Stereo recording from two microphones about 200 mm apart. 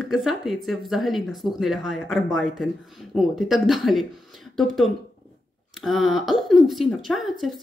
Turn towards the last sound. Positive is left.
turn(degrees=0)  # may be behind; listen again after turning